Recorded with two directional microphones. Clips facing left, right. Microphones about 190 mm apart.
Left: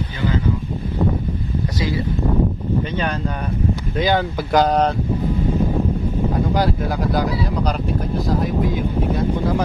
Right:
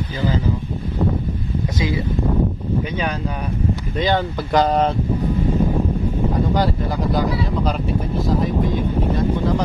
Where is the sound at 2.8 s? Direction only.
5° right (ahead or behind).